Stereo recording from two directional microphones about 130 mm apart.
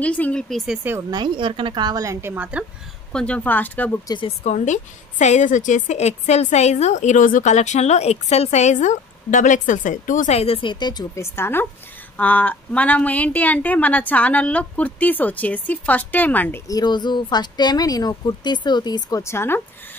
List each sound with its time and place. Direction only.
0.0 s speech: 10° left (ahead or behind)
1.1 s a woman's voice: 35° right (ahead or behind)
2.3 s speech: 10° right (ahead or behind)
3.1 s a woman's voice: 5° left (ahead or behind)
4.3 s a woman's voice: 60° left (ahead or behind)
10.4 s speech: 45° left (ahead or behind)
11.2 s a woman's voice: 20° left (ahead or behind)
16.6 s speech: 30° left (ahead or behind)